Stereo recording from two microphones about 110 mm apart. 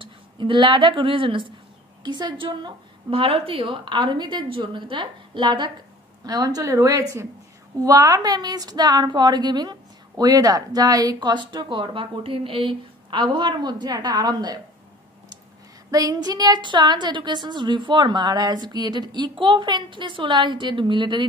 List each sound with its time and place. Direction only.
0.0 s a woman's voice: 50° right (ahead or behind)
6.2 s a woman's voice: 35° right (ahead or behind)
15.9 s a woman's voice: 35° right (ahead or behind)